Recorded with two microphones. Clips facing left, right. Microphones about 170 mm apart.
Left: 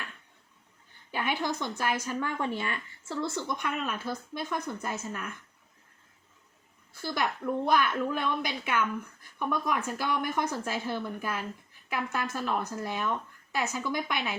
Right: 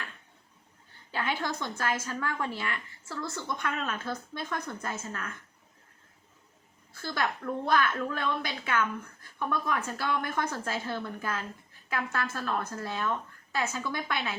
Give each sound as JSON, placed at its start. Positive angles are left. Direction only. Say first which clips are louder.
{"t": 1.1, "sound": "a woman's voice", "louder": "left 1 dB", "side_deg": 15}
{"t": 6.9, "sound": "a woman's voice", "louder": "left 1 dB", "side_deg": 15}